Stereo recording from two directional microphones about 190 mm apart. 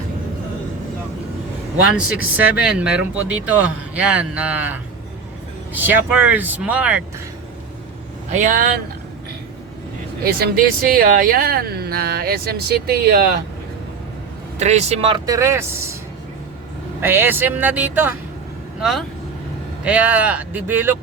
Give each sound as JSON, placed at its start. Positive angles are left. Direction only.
{"t": 2.0, "sound": "speech", "side_deg": -5}
{"t": 8.3, "sound": "speech", "side_deg": -40}
{"t": 10.2, "sound": "speech", "side_deg": -55}
{"t": 14.6, "sound": "speech", "side_deg": -35}
{"t": 15.3, "sound": "speech", "side_deg": -15}
{"t": 17.0, "sound": "speech", "side_deg": -10}